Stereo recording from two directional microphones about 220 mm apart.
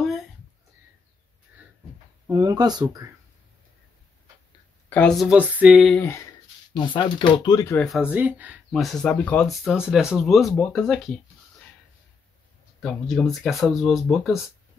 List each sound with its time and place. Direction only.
2.2 s speech: 15° right (ahead or behind)
4.8 s speech: 5° left (ahead or behind)
6.7 s speech: 20° left (ahead or behind); by 11.1 s 5° left (ahead or behind)
12.8 s speech: centre (ahead or behind)